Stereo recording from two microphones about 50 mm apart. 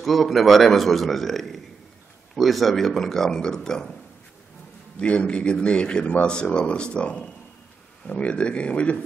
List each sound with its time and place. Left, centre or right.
0.0 s a man's voice: centre
4.9 s speech: left